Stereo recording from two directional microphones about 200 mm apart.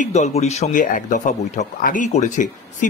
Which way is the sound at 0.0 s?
35° left (ahead or behind).